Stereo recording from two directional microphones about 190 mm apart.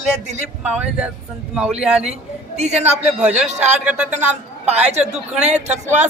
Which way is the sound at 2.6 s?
35° right (ahead or behind).